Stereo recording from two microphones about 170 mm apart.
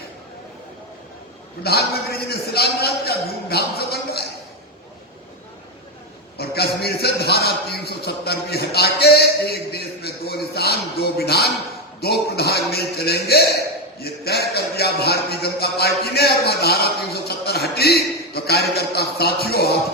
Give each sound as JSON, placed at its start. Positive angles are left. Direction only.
{"t": 1.6, "sound": "a man's voice", "side_deg": 65}
{"t": 6.3, "sound": "a man's voice", "side_deg": 70}